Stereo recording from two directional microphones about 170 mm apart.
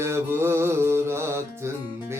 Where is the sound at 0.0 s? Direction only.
15° right (ahead or behind).